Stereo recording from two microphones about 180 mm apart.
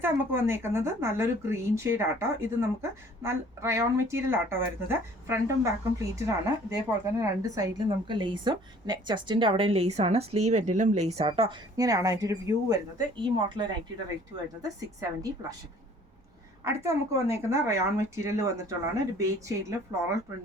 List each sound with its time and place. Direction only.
0.0 s a woman's voice: 15° right (ahead or behind)
16.6 s speech: 15° right (ahead or behind)